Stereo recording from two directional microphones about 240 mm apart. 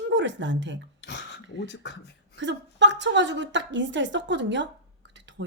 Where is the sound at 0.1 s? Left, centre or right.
Right.